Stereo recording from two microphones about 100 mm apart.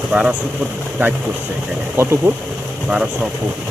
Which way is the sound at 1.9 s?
25° right (ahead or behind).